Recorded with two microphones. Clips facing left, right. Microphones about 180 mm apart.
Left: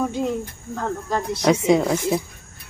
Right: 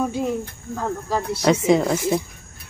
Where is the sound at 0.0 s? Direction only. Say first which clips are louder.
Even; 10° right (ahead or behind).